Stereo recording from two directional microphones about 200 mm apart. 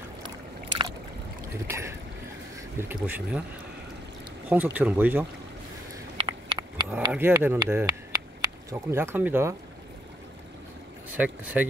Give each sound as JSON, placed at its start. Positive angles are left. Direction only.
{"t": 0.7, "sound": "boat", "side_deg": -25}
{"t": 1.7, "sound": "speech", "side_deg": -15}
{"t": 4.5, "sound": "speech", "side_deg": -10}
{"t": 6.1, "sound": "a sound", "side_deg": -25}
{"t": 6.9, "sound": "speech", "side_deg": -10}
{"t": 11.1, "sound": "speech", "side_deg": -5}